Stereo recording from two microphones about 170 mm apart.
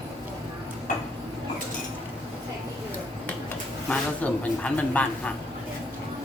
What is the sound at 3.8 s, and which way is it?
Speech, 5° left (ahead or behind).